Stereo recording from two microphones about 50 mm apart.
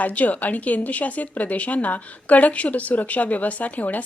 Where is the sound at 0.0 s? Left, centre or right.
Left.